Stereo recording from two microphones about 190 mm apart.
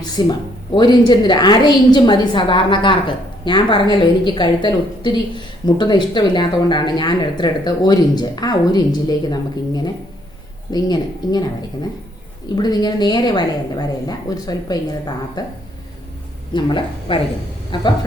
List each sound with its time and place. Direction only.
0.2 s a woman's voice: 20° left (ahead or behind)
12.5 s a woman's voice: 20° left (ahead or behind)
16.6 s a woman's voice: 25° left (ahead or behind)